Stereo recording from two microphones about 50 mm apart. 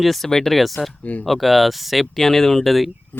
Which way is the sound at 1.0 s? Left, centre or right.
Left.